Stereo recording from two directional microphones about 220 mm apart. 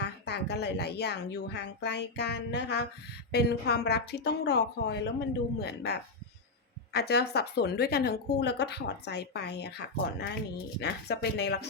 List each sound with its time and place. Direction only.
0.0 s a woman's voice: 50° left (ahead or behind)